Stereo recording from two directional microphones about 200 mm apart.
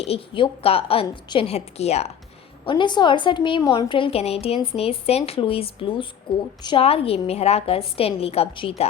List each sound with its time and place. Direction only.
0.0 s a woman's voice: 30° left (ahead or behind)